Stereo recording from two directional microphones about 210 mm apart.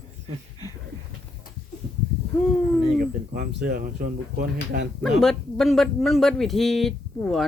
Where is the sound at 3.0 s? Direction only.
45° right (ahead or behind).